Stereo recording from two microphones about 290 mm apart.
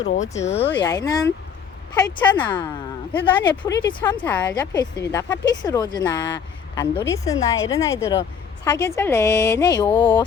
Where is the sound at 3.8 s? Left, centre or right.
Centre.